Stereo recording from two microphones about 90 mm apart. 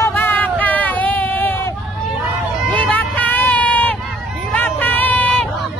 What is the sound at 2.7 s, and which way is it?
Vehicle, 15° left (ahead or behind).